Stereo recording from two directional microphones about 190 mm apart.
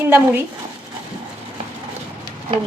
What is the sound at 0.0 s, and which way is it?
Speech, 10° right (ahead or behind).